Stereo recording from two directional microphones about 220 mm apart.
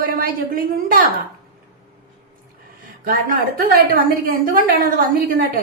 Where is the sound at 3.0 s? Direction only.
40° right (ahead or behind).